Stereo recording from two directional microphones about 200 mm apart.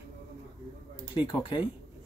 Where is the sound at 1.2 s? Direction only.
25° left (ahead or behind).